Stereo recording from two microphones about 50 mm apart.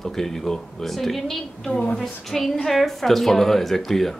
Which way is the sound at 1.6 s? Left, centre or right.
Left.